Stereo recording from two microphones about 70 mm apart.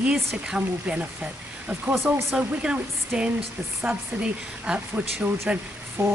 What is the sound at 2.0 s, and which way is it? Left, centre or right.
Speech, right.